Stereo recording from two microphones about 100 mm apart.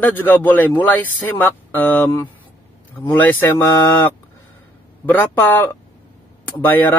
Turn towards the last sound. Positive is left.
turn(degrees=20)  # may be behind; listen again after turning